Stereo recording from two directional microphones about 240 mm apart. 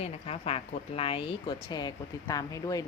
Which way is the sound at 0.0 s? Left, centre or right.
Left.